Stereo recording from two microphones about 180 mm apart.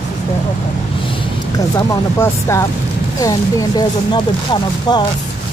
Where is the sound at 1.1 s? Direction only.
20° left (ahead or behind).